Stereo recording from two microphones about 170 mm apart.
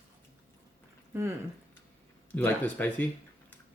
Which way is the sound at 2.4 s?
10° left (ahead or behind).